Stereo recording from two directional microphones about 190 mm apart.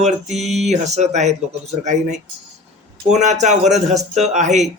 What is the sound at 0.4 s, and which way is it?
Music, centre (ahead or behind).